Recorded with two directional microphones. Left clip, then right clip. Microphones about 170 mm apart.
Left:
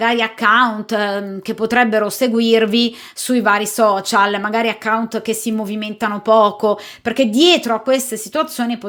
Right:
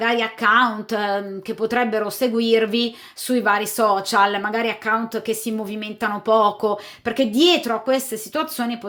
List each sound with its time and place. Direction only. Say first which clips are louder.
0.0 s speech: left 4 dB; 20° left (ahead or behind)